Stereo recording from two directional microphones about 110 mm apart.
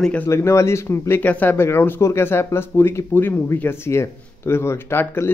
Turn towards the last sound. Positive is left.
turn(degrees=20)  # may be behind; listen again after turning